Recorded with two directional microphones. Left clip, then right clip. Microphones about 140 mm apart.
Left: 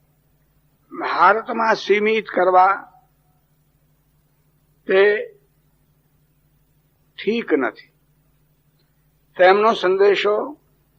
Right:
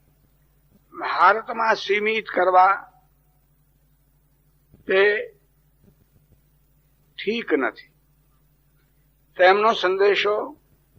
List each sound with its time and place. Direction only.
0.9 s a man's voice: 35° left (ahead or behind)
4.9 s speech: 45° left (ahead or behind)
7.2 s a man's voice: 40° left (ahead or behind)
9.3 s a man's voice: 40° left (ahead or behind)